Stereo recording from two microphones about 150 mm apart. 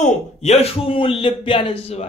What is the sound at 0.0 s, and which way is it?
Speech, 45° left (ahead or behind).